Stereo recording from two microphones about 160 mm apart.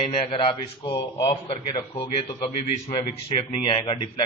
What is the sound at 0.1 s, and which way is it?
A man's voice, 35° left (ahead or behind).